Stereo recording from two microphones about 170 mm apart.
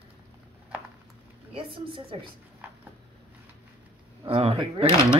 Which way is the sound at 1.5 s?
30° right (ahead or behind).